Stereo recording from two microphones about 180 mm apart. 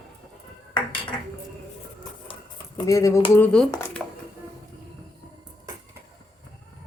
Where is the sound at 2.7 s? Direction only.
20° left (ahead or behind).